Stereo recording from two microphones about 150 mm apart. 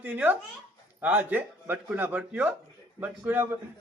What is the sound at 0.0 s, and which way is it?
A man's voice, 10° right (ahead or behind).